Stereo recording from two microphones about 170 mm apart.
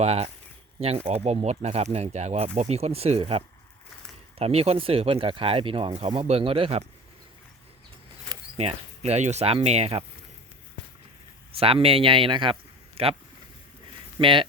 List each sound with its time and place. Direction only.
0.0 s speech: 40° right (ahead or behind)
8.5 s speech: 40° right (ahead or behind)
11.5 s speech: 35° right (ahead or behind)
14.2 s speech: 30° right (ahead or behind)